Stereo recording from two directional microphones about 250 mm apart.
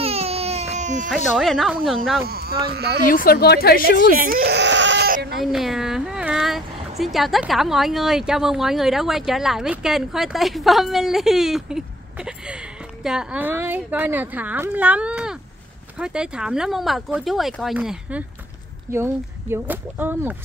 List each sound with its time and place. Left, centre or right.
0.0 s baby cry: right
1.1 s speech: centre
2.2 s a sound: right
3.1 s a woman's voice: left
4.1 s bleat: right
5.4 s speech: centre